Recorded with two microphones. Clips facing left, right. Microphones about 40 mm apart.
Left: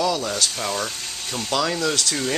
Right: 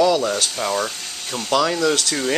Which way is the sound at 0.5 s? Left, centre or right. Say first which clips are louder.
Right 4 dB; centre.